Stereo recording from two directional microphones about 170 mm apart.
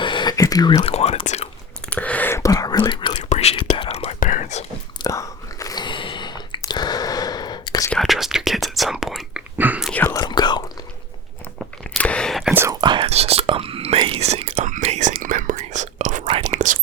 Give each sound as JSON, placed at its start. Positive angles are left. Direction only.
{"t": 0.0, "sound": "whispering", "side_deg": 25}
{"t": 0.9, "sound": "whispering", "side_deg": 35}
{"t": 1.9, "sound": "whispering", "side_deg": 10}
{"t": 3.2, "sound": "whispering", "side_deg": 40}
{"t": 4.2, "sound": "whispering", "side_deg": 50}
{"t": 5.0, "sound": "whispering", "side_deg": 20}
{"t": 7.9, "sound": "whispering", "side_deg": 0}
{"t": 9.9, "sound": "whispering", "side_deg": 15}
{"t": 11.8, "sound": "whispering", "side_deg": 5}
{"t": 12.8, "sound": "whispering", "side_deg": -30}